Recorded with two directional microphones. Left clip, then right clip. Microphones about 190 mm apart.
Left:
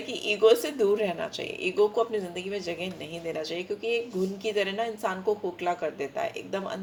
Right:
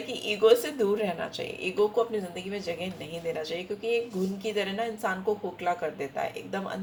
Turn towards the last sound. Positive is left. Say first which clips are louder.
# left 1 dB
turn(degrees=35)  # may be behind; listen again after turning